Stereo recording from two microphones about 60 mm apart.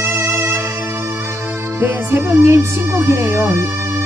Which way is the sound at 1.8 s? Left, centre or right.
Right.